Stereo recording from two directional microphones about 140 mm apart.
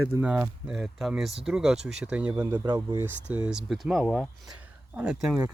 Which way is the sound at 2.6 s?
30° right (ahead or behind).